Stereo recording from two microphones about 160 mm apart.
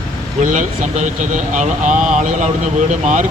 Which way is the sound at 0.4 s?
50° right (ahead or behind).